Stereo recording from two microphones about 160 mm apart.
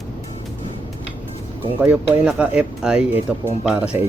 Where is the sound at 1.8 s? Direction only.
10° right (ahead or behind).